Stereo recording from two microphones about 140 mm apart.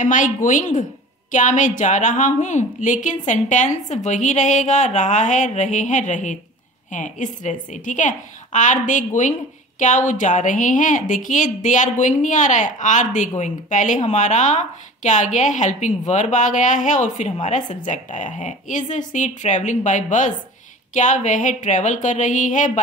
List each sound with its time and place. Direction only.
0.0 s a woman's voice: 65° left (ahead or behind)